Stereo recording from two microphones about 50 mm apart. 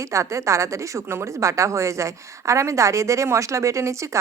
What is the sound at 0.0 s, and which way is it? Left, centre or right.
A woman's voice, right.